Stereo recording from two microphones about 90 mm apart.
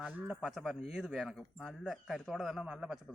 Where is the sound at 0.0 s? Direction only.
5° right (ahead or behind).